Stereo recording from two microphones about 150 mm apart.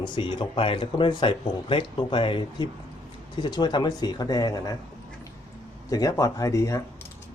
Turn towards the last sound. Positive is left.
turn(degrees=20)  # may be behind; listen again after turning